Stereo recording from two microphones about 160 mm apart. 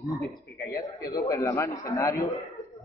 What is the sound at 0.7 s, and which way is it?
A man's voice, 20° left (ahead or behind).